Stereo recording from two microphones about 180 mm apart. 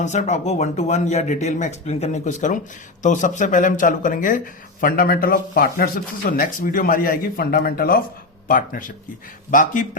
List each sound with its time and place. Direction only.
0.0 s speech: 40° left (ahead or behind)